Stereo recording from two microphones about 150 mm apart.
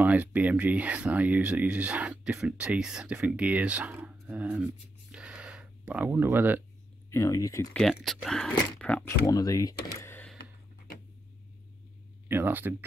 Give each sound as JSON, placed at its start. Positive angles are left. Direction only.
{"t": 0.0, "sound": "speech", "side_deg": -10}
{"t": 5.1, "sound": "a sound", "side_deg": -5}
{"t": 7.1, "sound": "speech", "side_deg": 20}
{"t": 7.7, "sound": "speech", "side_deg": 0}
{"t": 9.0, "sound": "speech", "side_deg": 20}
{"t": 9.9, "sound": "a sound", "side_deg": 15}
{"t": 12.3, "sound": "speech", "side_deg": -15}